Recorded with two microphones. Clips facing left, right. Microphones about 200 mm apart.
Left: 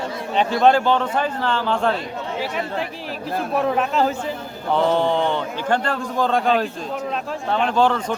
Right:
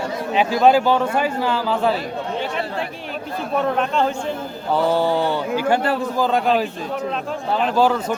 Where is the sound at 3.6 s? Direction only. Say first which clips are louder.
Even; 5° left (ahead or behind).